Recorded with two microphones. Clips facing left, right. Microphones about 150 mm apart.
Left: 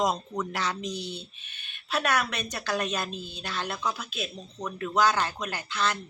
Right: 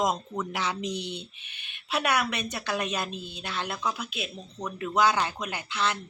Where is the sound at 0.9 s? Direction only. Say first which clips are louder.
Right 1 dB; 70° right (ahead or behind).